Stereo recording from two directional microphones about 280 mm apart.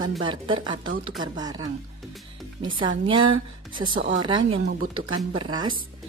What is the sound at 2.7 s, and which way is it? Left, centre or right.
Speech, centre.